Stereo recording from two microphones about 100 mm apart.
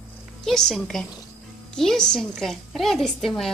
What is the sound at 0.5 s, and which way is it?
A woman's voice, 5° left (ahead or behind).